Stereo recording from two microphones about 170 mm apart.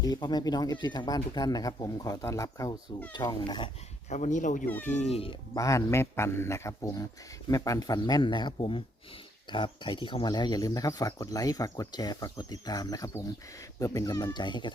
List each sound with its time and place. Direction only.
0.0 s speech: 25° left (ahead or behind)
4.1 s speech: 45° left (ahead or behind)
5.5 s a man's voice: 20° left (ahead or behind)